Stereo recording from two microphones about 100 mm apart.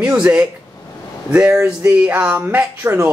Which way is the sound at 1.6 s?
15° right (ahead or behind).